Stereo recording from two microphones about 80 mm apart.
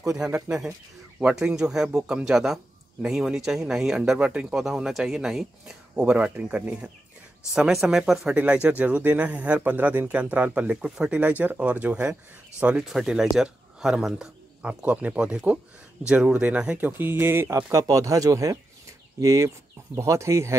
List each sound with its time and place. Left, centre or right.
0.1 s a man's voice: centre
12.8 s a man's voice: centre; by 20.5 s right